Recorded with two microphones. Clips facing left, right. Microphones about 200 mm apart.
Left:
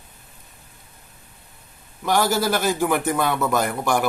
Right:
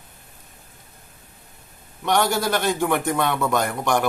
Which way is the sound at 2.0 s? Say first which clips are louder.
Left 1 dB; 5° left (ahead or behind).